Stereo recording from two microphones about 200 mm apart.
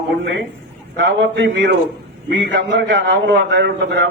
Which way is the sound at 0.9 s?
65° right (ahead or behind).